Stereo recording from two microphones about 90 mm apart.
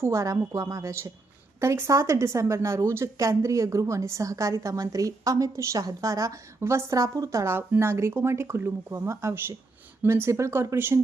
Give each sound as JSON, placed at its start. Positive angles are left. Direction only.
{"t": 0.0, "sound": "a woman's voice", "side_deg": -35}